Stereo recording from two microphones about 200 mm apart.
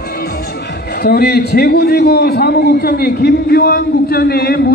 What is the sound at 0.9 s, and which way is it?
A man's voice, 50° left (ahead or behind).